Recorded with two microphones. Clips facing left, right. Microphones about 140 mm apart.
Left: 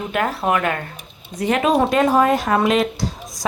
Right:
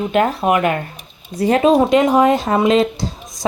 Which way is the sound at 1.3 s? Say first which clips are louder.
Right 5 dB; 35° right (ahead or behind).